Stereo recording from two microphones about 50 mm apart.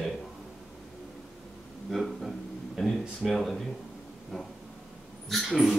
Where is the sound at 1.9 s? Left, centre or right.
Centre.